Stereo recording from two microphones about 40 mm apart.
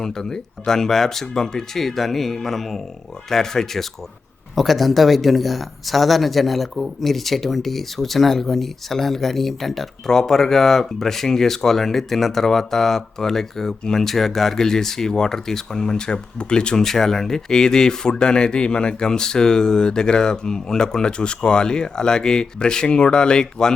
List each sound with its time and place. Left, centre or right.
0.0 s speech: centre
4.5 s speech: centre